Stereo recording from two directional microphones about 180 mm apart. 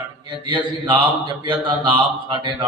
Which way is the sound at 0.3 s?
25° right (ahead or behind).